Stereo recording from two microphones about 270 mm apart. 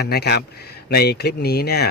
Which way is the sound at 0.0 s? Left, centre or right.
Left.